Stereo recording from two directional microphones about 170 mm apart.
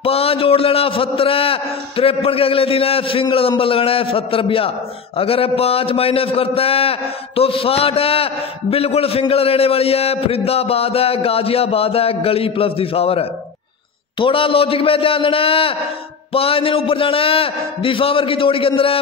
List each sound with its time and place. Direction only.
0.0 s a man's voice: 35° left (ahead or behind)